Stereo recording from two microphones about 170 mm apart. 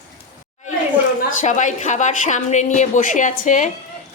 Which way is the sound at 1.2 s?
45° left (ahead or behind).